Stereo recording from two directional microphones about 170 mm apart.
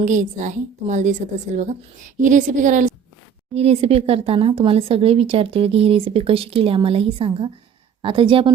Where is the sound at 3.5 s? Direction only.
35° right (ahead or behind).